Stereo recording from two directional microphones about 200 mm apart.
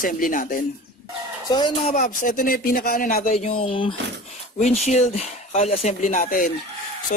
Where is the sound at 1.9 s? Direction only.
40° left (ahead or behind).